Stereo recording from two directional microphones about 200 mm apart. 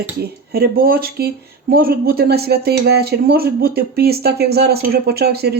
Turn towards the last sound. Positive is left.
turn(degrees=-55)  # may be behind; listen again after turning